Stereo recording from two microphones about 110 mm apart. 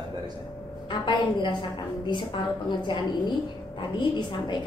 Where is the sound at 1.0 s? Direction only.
45° left (ahead or behind).